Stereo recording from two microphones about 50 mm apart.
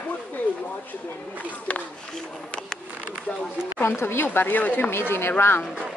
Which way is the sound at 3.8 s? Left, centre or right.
Left.